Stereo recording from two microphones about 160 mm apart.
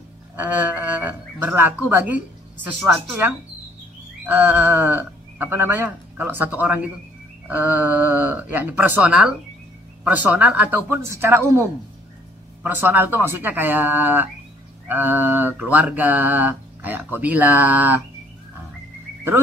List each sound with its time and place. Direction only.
0.4 s speech: 10° right (ahead or behind)
12.6 s speech: 10° right (ahead or behind)